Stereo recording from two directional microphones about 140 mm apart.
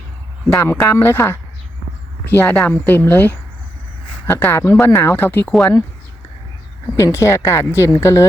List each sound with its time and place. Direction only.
0.5 s speech: 15° left (ahead or behind)
5.5 s speech: 5° left (ahead or behind)
6.8 s speech: 20° left (ahead or behind)